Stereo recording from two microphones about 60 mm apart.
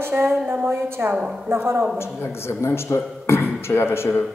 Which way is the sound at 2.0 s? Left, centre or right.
Left.